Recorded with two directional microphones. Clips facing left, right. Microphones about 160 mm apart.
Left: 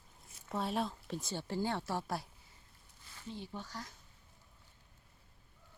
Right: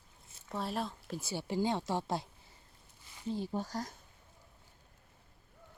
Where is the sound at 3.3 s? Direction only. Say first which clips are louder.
Right 9 dB; 40° right (ahead or behind).